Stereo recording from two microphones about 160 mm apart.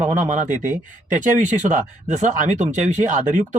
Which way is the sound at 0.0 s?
50° right (ahead or behind).